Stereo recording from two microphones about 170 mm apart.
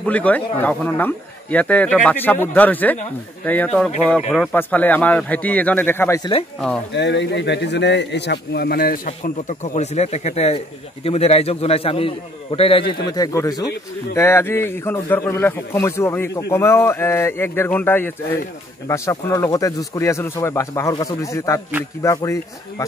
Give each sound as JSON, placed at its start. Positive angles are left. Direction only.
{"t": 0.0, "sound": "a man's voice", "side_deg": 10}
{"t": 6.9, "sound": "a man's voice", "side_deg": 90}